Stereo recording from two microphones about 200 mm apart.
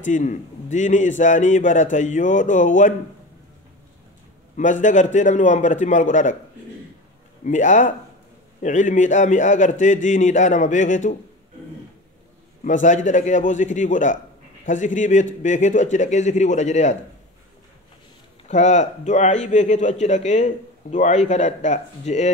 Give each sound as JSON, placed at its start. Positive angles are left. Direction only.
{"t": 0.0, "sound": "a man's voice", "side_deg": 40}
{"t": 4.6, "sound": "a man's voice", "side_deg": 40}
{"t": 7.4, "sound": "a man's voice", "side_deg": 40}
{"t": 12.6, "sound": "a man's voice", "side_deg": 40}
{"t": 18.5, "sound": "a man's voice", "side_deg": 35}